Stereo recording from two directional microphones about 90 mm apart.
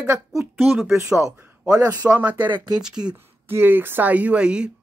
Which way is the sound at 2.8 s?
10° right (ahead or behind).